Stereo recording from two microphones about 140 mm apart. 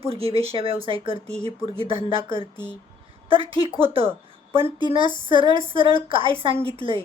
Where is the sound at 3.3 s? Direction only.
40° right (ahead or behind).